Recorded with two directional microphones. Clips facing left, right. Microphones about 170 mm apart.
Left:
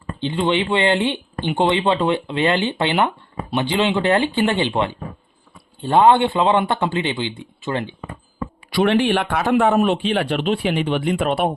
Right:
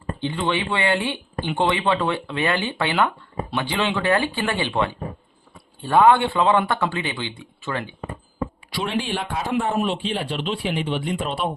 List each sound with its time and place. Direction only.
0.2 s speech: 20° left (ahead or behind)
8.7 s speech: 65° left (ahead or behind)